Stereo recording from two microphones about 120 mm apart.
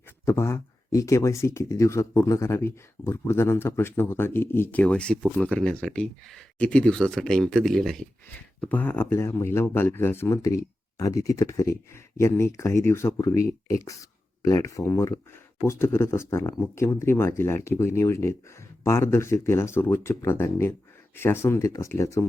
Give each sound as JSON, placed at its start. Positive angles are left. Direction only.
{"t": 0.3, "sound": "speech", "side_deg": 20}
{"t": 8.6, "sound": "speech", "side_deg": 15}